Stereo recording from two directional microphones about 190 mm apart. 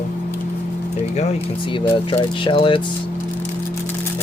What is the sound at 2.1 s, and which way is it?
Speech, 25° left (ahead or behind).